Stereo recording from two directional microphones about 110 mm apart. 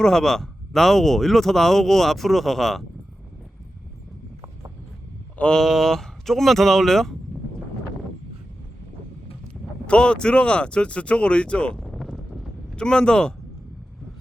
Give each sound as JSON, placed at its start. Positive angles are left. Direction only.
{"t": 0.0, "sound": "speech", "side_deg": 5}
{"t": 5.4, "sound": "speech", "side_deg": 5}
{"t": 9.8, "sound": "speech", "side_deg": 10}